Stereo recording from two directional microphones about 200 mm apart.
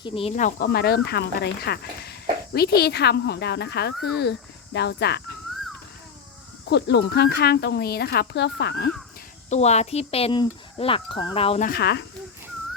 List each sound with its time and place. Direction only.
0.0 s speech: 25° left (ahead or behind)
0.7 s speech: 50° left (ahead or behind)
6.7 s speech: 55° left (ahead or behind)
9.5 s speech: 35° left (ahead or behind)
11.6 s speech: 50° left (ahead or behind)